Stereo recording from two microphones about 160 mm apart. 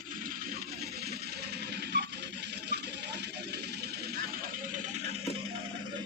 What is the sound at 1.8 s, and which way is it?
Music, 90° right.